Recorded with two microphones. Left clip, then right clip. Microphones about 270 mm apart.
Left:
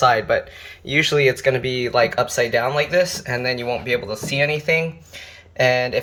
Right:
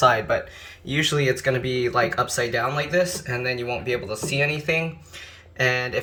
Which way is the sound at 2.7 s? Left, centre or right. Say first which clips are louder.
Left 4 dB; centre.